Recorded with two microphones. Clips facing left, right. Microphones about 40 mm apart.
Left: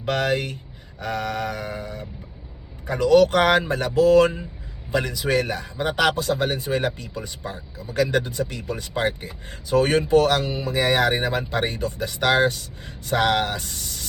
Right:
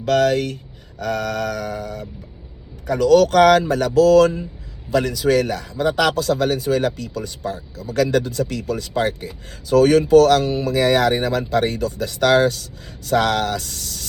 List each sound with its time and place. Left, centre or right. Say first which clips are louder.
0.0 s a man's voice: right 6 dB; left